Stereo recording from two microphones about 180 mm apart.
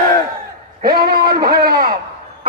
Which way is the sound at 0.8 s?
60° right (ahead or behind).